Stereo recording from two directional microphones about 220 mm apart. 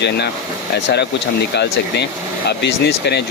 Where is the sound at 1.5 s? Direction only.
50° left (ahead or behind).